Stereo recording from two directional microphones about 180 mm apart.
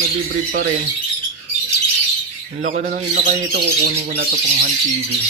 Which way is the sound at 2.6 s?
50° right (ahead or behind).